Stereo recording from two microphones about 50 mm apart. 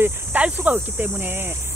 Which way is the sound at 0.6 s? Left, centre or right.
Right.